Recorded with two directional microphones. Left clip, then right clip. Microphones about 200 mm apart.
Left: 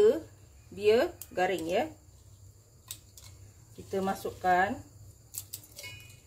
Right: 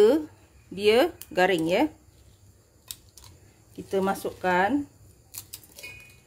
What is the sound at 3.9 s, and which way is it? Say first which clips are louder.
Speech: right 6 dB; 60° right (ahead or behind).